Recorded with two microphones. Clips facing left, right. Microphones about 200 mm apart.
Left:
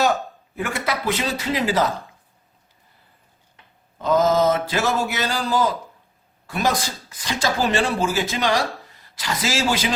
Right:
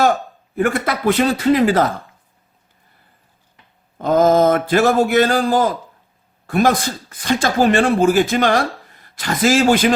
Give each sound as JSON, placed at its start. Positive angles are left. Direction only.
{"t": 0.5, "sound": "speech", "side_deg": -50}
{"t": 3.9, "sound": "a man's voice", "side_deg": -55}